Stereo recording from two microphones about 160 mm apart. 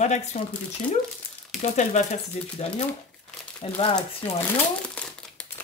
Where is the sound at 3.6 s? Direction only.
40° left (ahead or behind).